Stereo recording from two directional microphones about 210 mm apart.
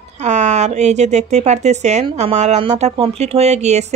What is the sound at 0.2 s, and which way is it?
Speech, 35° right (ahead or behind).